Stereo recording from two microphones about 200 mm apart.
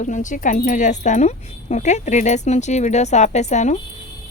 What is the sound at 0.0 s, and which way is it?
Speech, 40° left (ahead or behind).